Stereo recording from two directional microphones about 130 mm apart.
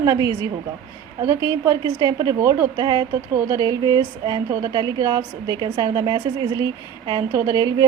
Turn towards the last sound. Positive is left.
turn(degrees=-30)  # may be behind; listen again after turning